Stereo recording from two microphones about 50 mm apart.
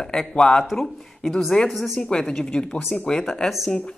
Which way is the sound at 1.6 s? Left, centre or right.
Centre.